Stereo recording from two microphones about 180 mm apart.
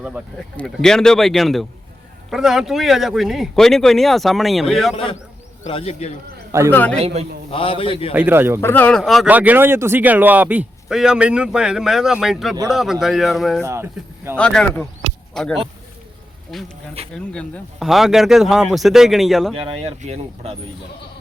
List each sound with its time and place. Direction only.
0.5 s speech: 5° left (ahead or behind)
5.6 s a man's voice: 35° left (ahead or behind)
6.7 s a man's voice: 10° left (ahead or behind)
7.0 s speech: 35° right (ahead or behind)
7.5 s a man's voice: 30° left (ahead or behind)
8.1 s speech: 10° right (ahead or behind)
8.6 s speech: 10° left (ahead or behind)
13.6 s speech: 15° right (ahead or behind)
14.3 s speech: 5° left (ahead or behind)
16.5 s speech: centre (ahead or behind)
19.5 s speech: 30° right (ahead or behind)